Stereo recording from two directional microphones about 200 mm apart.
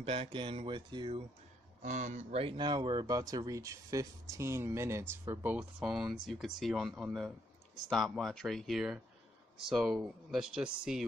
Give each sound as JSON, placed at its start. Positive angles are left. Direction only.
{"t": 0.0, "sound": "speech", "side_deg": -30}
{"t": 1.8, "sound": "speech", "side_deg": -35}